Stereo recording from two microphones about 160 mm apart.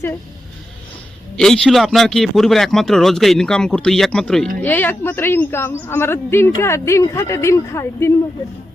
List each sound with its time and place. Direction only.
1.4 s speech: 5° left (ahead or behind)